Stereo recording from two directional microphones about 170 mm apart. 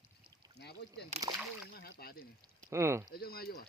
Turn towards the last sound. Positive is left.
turn(degrees=60)  # may be behind; listen again after turning